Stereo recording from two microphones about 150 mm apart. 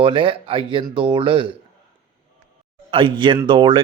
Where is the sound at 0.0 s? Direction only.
35° right (ahead or behind).